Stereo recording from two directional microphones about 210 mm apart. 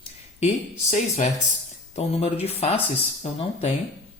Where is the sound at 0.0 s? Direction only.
30° left (ahead or behind).